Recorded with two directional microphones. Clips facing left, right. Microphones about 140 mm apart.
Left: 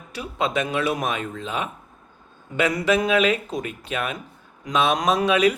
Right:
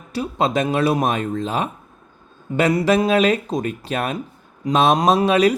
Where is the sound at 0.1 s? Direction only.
35° right (ahead or behind).